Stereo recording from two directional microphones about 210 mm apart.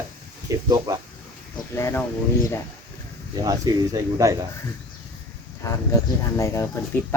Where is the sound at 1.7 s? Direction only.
15° left (ahead or behind).